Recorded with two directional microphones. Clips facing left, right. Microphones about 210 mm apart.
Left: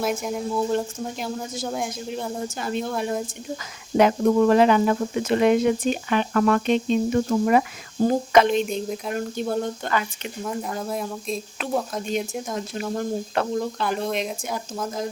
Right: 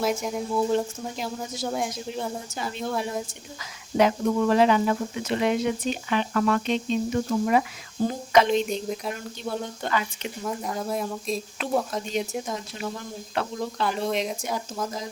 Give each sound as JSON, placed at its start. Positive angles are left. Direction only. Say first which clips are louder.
{"t": 0.0, "sound": "speech", "louder": "left 1 dB", "side_deg": 5}
{"t": 3.9, "sound": "speech", "louder": "left 4 dB", "side_deg": 50}
{"t": 8.6, "sound": "speech", "louder": "left 1 dB", "side_deg": 0}
{"t": 10.4, "sound": "speech", "louder": "left 1 dB", "side_deg": 0}
{"t": 13.0, "sound": "speech", "louder": "left 6 dB", "side_deg": 50}
{"t": 13.7, "sound": "speech", "louder": "left 1 dB", "side_deg": 0}